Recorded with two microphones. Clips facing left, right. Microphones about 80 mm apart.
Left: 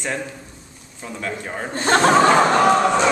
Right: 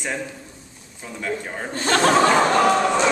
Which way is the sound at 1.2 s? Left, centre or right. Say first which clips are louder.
Right 1 dB; centre.